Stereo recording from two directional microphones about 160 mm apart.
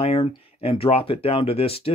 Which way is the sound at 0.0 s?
40° left (ahead or behind).